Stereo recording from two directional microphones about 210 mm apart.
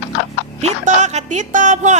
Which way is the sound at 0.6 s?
35° right (ahead or behind).